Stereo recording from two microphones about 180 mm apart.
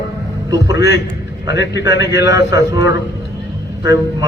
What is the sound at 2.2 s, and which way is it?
A man's voice, 20° right (ahead or behind).